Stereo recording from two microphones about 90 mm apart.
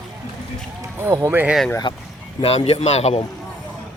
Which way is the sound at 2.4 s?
90° left.